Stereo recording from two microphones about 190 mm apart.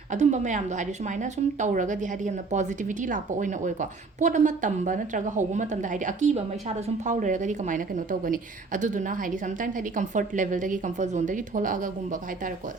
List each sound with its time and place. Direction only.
0.1 s a woman's voice: 40° right (ahead or behind)